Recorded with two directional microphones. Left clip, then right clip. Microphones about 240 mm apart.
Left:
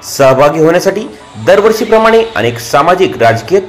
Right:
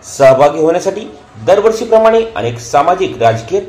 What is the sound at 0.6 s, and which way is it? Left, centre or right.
Speech, centre.